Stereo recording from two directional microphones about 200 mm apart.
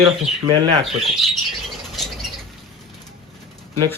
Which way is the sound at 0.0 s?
25° right (ahead or behind).